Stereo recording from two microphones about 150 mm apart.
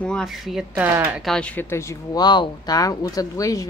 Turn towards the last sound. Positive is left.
turn(degrees=20)  # may be behind; listen again after turning